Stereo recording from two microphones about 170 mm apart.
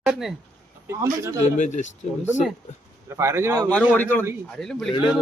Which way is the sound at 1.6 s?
45° left (ahead or behind).